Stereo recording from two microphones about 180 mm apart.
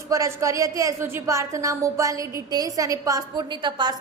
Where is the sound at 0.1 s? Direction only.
15° right (ahead or behind).